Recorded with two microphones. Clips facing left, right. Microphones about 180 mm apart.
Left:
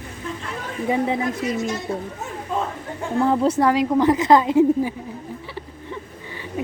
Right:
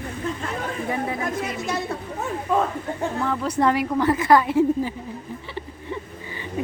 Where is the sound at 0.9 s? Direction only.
25° left (ahead or behind).